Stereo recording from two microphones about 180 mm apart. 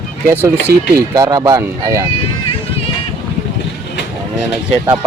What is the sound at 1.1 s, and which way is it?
Speech, 20° right (ahead or behind).